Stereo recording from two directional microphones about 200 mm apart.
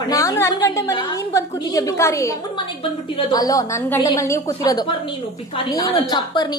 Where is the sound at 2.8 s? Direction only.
25° left (ahead or behind).